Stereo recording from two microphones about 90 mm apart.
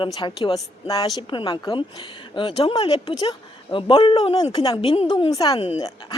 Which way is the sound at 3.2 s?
60° left (ahead or behind).